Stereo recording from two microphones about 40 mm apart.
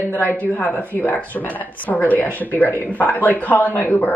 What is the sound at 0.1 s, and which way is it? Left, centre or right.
A man's voice, left.